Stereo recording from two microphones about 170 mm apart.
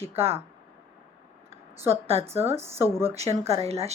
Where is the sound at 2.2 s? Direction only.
15° right (ahead or behind).